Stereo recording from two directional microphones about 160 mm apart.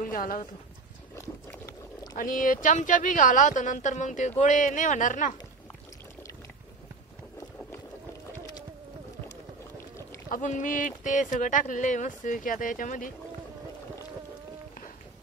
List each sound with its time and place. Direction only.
0.0 s speech: 60° left (ahead or behind)
1.1 s boat: 20° left (ahead or behind)
2.1 s speech: 60° left (ahead or behind)
10.3 s speech: 55° left (ahead or behind)